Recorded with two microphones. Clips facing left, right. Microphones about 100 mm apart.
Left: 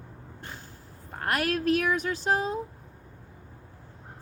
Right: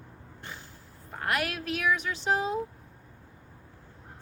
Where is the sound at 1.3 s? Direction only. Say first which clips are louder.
Left 5 dB; 45° left (ahead or behind).